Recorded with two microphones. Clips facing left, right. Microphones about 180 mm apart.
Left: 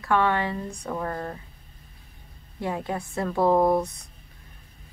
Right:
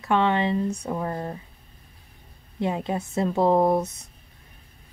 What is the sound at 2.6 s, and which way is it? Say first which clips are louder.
Speech: right 3 dB; 20° right (ahead or behind).